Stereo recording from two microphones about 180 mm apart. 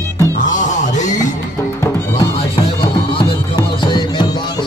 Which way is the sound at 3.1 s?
30° left (ahead or behind).